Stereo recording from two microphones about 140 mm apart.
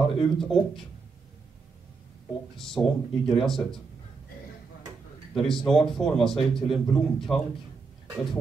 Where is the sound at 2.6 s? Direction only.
Centre (ahead or behind).